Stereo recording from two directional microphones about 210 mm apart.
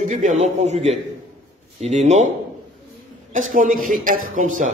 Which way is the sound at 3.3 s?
40° right (ahead or behind).